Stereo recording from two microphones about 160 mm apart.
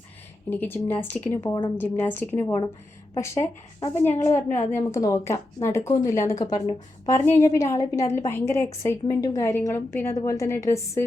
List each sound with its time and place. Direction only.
0.5 s a woman's voice: 15° left (ahead or behind)
1.5 s a woman's voice: 25° left (ahead or behind)
1.8 s a woman's voice: 10° left (ahead or behind)
6.4 s a woman's voice: 30° left (ahead or behind)